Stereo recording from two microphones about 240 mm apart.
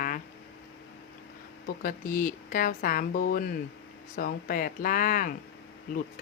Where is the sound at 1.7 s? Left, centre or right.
Left.